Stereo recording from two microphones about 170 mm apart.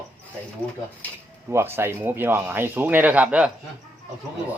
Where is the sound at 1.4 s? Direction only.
15° right (ahead or behind).